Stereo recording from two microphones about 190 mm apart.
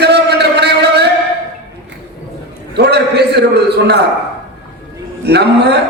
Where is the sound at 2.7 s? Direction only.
60° right (ahead or behind).